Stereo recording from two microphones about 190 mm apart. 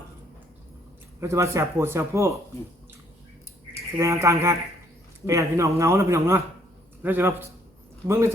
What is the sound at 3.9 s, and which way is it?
Speech, 15° right (ahead or behind).